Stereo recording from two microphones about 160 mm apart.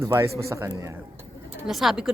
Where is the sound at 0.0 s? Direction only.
20° right (ahead or behind).